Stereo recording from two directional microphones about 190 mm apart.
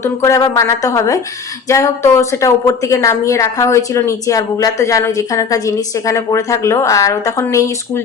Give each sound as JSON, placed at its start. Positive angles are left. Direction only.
{"t": 0.0, "sound": "a woman's voice", "side_deg": 15}